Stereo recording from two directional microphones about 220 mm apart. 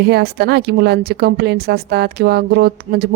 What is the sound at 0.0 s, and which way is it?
Speech, 50° right (ahead or behind).